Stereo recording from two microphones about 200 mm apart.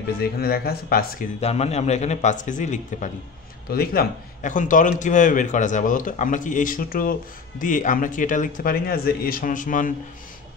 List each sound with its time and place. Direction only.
0.2 s speech: 50° left (ahead or behind)
1.4 s a man's voice: 30° left (ahead or behind)
3.7 s a man's voice: 50° left (ahead or behind)